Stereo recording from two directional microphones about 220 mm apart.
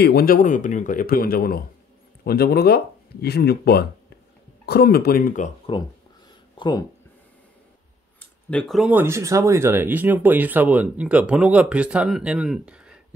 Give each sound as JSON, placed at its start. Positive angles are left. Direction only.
{"t": 0.0, "sound": "speech", "side_deg": 45}
{"t": 5.7, "sound": "speech", "side_deg": 25}
{"t": 8.2, "sound": "speech", "side_deg": 5}